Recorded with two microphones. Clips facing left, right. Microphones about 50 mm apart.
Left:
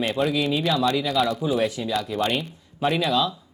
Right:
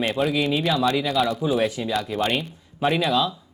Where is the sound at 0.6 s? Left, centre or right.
Centre.